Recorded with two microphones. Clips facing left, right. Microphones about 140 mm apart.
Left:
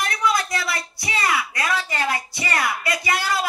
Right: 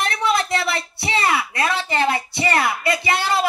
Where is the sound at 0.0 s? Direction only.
25° right (ahead or behind).